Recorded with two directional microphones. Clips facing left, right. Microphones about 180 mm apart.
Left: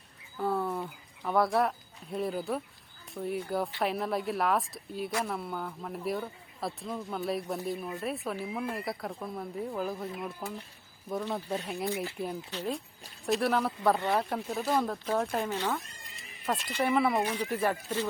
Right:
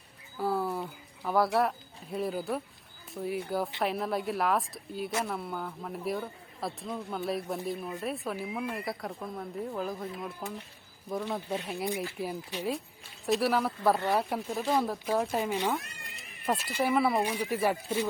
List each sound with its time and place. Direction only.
0.3 s bird: 5° right (ahead or behind)
1.5 s a man's voice: centre (ahead or behind)
11.4 s a man's voice: 10° right (ahead or behind)
15.8 s cat: 75° right (ahead or behind)
16.5 s a man's voice: 5° right (ahead or behind)